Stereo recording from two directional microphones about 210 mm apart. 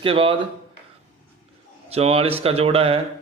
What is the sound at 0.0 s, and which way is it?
Speech, 25° right (ahead or behind).